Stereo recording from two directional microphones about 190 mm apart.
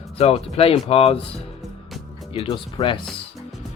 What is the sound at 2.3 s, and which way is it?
Speech, 25° left (ahead or behind).